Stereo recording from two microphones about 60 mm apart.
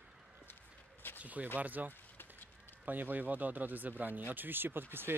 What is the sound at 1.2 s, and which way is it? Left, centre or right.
Speech, right.